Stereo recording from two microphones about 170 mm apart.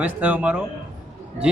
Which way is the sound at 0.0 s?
10° right (ahead or behind).